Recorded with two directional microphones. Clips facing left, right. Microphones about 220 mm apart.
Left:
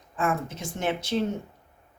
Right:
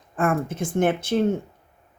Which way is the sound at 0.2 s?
50° right (ahead or behind).